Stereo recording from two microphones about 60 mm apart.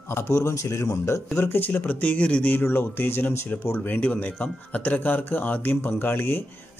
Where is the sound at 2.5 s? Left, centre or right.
Left.